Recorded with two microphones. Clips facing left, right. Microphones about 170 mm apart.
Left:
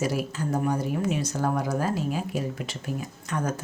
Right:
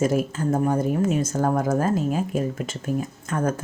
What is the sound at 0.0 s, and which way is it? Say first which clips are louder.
A woman's voice: right 6 dB; 45° right (ahead or behind).